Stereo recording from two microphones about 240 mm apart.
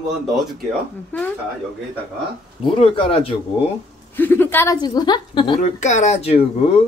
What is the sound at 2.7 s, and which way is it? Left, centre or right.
Speech, left.